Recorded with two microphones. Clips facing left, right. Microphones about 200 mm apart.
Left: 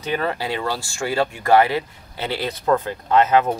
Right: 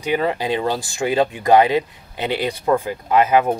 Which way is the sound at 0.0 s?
15° right (ahead or behind).